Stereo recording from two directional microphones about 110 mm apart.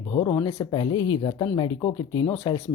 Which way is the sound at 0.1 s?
40° left (ahead or behind).